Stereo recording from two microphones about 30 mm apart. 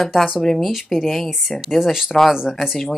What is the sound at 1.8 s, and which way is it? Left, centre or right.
Speech, centre.